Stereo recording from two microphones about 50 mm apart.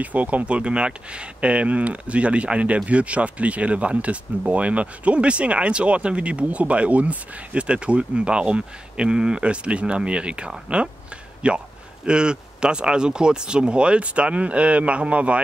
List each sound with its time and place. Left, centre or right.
0.0 s speech: right